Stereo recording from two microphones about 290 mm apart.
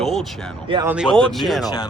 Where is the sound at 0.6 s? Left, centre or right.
Centre.